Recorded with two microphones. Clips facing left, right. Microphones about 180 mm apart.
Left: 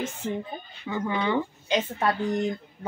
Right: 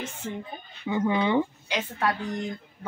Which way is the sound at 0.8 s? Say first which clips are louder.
Right 3 dB; 15° right (ahead or behind).